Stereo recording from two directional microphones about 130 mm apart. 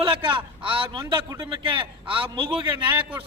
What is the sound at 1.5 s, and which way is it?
A man's voice, 40° right (ahead or behind).